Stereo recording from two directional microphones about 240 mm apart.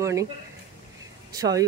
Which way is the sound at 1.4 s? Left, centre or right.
Centre.